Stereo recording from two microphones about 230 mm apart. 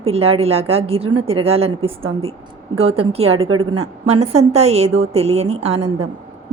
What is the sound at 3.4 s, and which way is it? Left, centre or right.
Speech, right.